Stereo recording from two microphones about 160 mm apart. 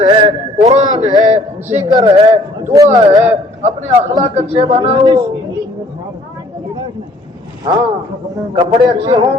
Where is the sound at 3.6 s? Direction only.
40° right (ahead or behind).